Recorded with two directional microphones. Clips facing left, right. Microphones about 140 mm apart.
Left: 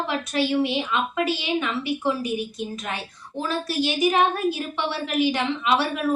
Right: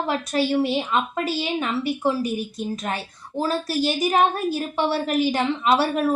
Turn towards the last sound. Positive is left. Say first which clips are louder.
# right 3 dB
turn(degrees=-40)  # may be behind; listen again after turning